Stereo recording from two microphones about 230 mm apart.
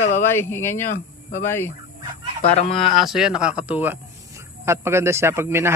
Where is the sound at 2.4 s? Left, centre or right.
Left.